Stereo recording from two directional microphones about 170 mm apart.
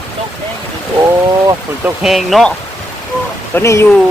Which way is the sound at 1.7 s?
10° right (ahead or behind).